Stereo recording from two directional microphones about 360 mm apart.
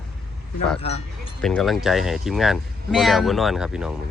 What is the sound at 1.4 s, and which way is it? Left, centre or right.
Speech, centre.